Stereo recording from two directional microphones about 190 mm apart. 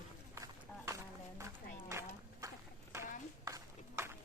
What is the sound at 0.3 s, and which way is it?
Run, 15° right (ahead or behind).